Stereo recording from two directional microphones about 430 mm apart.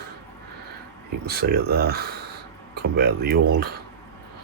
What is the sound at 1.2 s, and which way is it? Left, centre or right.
Speech, right.